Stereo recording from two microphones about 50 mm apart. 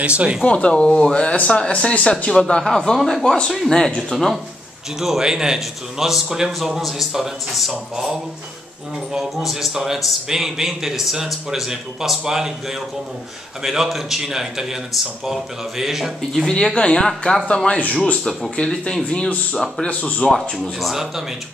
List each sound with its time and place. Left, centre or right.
0.0 s speech: right
0.4 s a man's voice: left; by 3.3 s centre
3.7 s speech: centre
5.0 s a man's voice: centre
16.4 s speech: centre
18.6 s speech: centre